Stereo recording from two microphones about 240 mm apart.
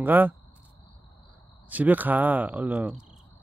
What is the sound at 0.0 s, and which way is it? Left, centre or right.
Speech, centre.